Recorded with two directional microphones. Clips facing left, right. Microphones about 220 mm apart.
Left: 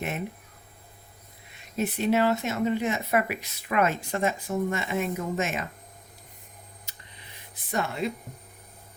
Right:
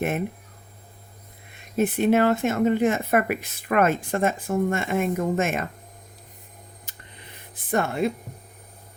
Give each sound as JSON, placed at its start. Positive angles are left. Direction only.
{"t": 1.5, "sound": "speech", "side_deg": -50}
{"t": 6.9, "sound": "a sound", "side_deg": -50}
{"t": 7.5, "sound": "speech", "side_deg": -50}